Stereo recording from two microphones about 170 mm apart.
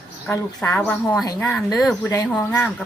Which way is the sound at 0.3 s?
15° left (ahead or behind).